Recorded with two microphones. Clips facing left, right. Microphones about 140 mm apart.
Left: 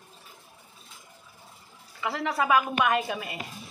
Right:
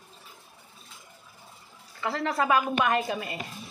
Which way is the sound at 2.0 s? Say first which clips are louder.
Right 1 dB; 5° left (ahead or behind).